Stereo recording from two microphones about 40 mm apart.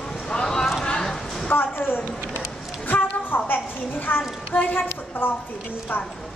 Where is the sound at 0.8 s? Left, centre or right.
Centre.